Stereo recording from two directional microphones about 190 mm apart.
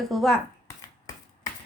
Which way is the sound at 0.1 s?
Centre (ahead or behind).